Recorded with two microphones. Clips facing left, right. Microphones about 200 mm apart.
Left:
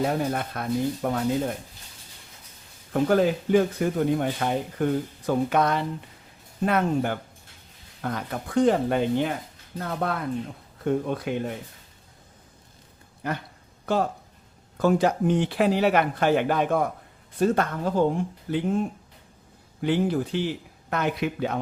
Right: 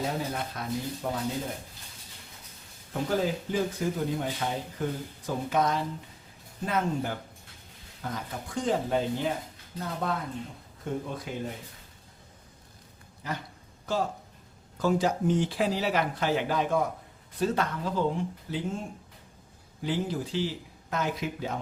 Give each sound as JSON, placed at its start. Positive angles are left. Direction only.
{"t": 0.0, "sound": "speech", "side_deg": 60}
{"t": 2.9, "sound": "speech", "side_deg": 65}
{"t": 13.2, "sound": "speech", "side_deg": 60}